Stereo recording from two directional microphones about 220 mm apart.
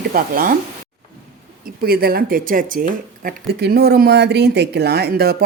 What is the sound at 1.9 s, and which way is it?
Speech, 45° right (ahead or behind).